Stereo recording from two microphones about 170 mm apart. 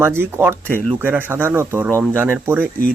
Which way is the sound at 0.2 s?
15° right (ahead or behind).